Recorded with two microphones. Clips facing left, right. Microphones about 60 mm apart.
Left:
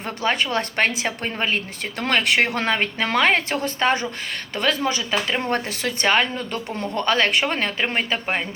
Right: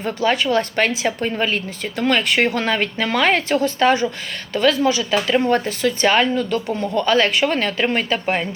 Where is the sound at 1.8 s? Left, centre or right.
Left.